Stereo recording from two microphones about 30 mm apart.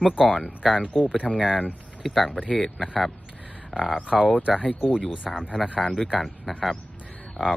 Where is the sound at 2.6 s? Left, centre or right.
Centre.